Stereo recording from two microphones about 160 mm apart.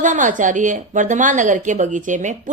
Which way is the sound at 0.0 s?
50° right (ahead or behind).